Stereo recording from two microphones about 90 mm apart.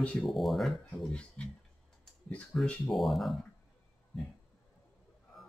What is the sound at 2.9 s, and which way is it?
Speech, centre (ahead or behind).